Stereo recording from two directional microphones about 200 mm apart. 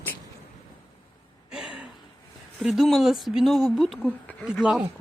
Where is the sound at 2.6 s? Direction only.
Centre (ahead or behind).